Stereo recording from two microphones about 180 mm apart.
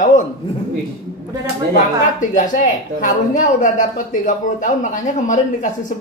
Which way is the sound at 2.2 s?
45° left (ahead or behind).